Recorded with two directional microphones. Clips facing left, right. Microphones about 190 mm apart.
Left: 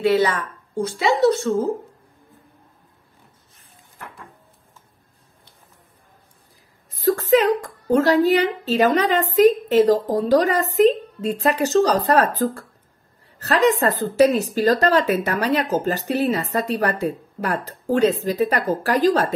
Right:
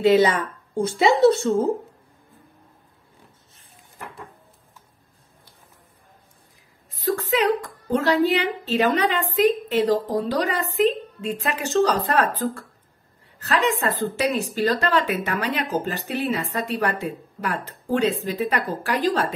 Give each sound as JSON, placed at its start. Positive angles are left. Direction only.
{"t": 0.0, "sound": "speech", "side_deg": -20}
{"t": 6.9, "sound": "a woman's voice", "side_deg": 40}